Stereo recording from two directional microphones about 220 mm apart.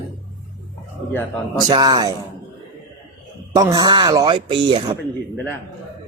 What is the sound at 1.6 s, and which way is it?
Speech, 20° right (ahead or behind).